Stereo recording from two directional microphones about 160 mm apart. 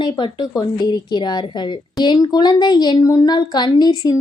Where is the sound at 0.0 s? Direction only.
30° left (ahead or behind).